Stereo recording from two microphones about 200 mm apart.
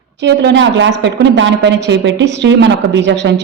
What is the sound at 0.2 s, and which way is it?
A woman's voice, 60° right (ahead or behind).